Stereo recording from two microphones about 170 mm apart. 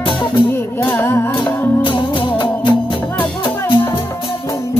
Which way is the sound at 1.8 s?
30° left (ahead or behind).